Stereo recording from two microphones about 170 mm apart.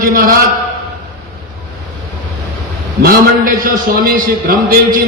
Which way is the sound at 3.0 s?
55° right (ahead or behind).